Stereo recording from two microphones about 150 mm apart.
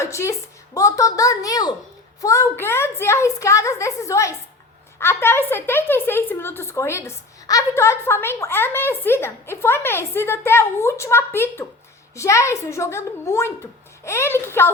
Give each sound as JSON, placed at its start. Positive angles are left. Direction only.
{"t": 0.0, "sound": "a woman's voice", "side_deg": 20}